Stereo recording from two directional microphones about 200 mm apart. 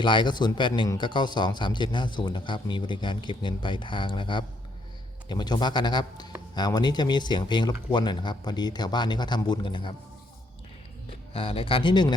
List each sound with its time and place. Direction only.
0.0 s speech: 25° left (ahead or behind)
11.3 s speech: 25° left (ahead or behind)